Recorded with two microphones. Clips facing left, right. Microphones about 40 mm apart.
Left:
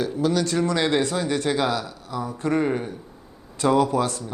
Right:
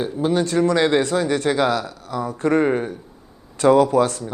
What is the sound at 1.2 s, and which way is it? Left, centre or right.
A man's voice, right.